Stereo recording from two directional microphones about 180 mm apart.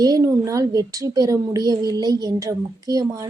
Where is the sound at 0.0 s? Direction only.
20° right (ahead or behind).